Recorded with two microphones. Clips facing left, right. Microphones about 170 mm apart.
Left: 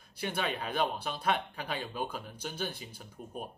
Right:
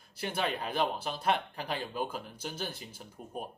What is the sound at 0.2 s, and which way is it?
Speech, centre (ahead or behind).